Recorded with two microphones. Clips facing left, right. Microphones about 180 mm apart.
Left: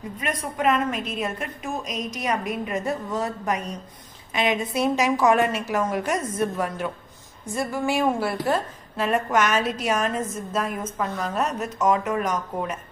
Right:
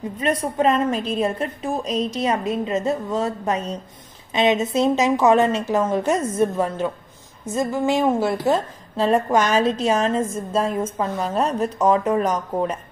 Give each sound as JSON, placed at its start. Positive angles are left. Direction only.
{"t": 0.2, "sound": "a woman's voice", "side_deg": -30}